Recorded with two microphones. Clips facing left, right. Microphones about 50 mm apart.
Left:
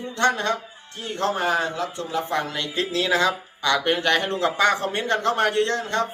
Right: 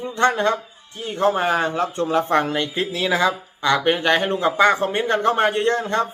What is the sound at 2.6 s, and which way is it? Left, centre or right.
Speech, centre.